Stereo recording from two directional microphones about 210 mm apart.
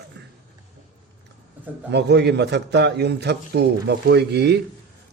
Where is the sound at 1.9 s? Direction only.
50° right (ahead or behind).